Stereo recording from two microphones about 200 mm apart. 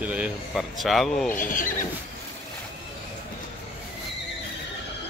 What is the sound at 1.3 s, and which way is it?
Speech, 40° left (ahead or behind).